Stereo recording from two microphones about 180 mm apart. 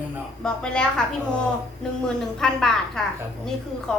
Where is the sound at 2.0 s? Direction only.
5° left (ahead or behind).